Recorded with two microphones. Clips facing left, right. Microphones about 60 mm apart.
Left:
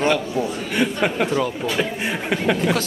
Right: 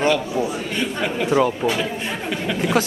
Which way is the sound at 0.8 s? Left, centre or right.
Left.